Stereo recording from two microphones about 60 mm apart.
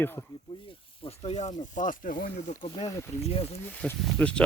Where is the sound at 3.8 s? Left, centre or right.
Left.